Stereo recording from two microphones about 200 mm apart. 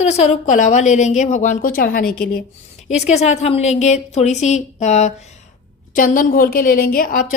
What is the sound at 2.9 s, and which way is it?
A woman's voice, 35° left (ahead or behind).